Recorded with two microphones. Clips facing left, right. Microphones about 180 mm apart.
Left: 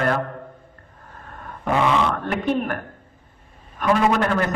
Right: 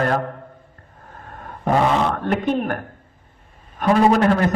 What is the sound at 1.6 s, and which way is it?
Speech, 40° right (ahead or behind).